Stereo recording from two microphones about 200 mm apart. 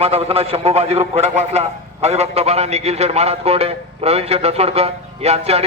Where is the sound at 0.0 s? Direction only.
30° right (ahead or behind).